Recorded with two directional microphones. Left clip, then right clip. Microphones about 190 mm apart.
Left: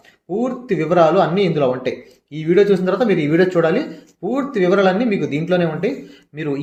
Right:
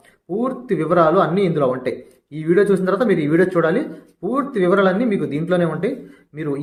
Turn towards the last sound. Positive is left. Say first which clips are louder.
# left 1 dB
turn(degrees=10)  # may be behind; listen again after turning